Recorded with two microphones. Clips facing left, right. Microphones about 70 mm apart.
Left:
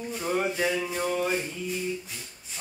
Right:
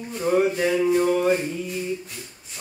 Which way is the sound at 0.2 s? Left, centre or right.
Centre.